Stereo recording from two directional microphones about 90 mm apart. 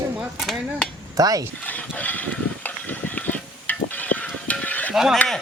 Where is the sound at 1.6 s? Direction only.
15° left (ahead or behind).